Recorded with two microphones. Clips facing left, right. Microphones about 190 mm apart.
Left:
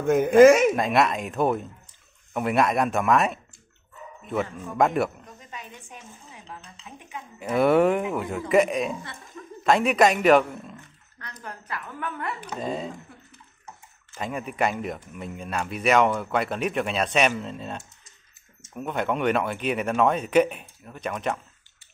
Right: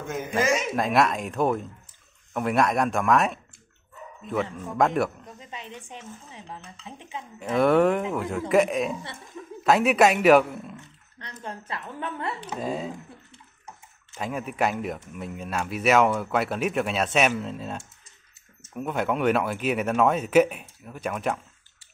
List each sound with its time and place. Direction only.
0.0 s speech: 55° left (ahead or behind)
0.7 s speech: centre (ahead or behind)
4.7 s speech: centre (ahead or behind)
5.2 s speech: 25° right (ahead or behind)
7.3 s speech: centre (ahead or behind)
11.4 s speech: 25° right (ahead or behind)
12.4 s speech: 5° right (ahead or behind)
14.1 s speech: 5° right (ahead or behind)